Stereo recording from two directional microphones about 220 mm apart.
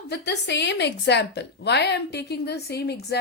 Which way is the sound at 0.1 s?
50° left (ahead or behind).